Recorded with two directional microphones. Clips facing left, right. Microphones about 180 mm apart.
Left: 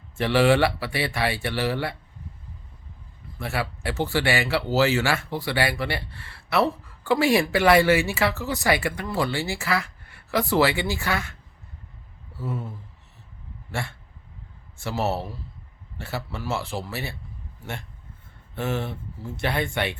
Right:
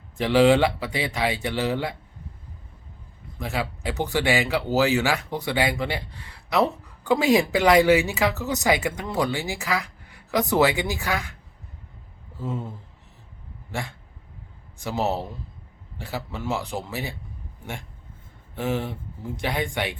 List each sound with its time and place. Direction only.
0.2 s speech: 15° right (ahead or behind)
3.3 s speech: 15° right (ahead or behind)
12.4 s a sound: 20° right (ahead or behind)
13.7 s speech: 15° right (ahead or behind)